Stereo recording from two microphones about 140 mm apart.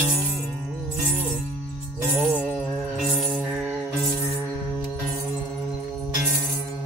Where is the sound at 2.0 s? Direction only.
15° right (ahead or behind).